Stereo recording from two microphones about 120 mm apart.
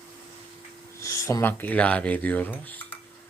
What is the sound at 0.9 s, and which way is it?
Speech, 25° left (ahead or behind).